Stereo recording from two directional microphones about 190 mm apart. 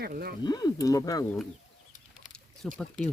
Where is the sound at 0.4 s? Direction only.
20° left (ahead or behind).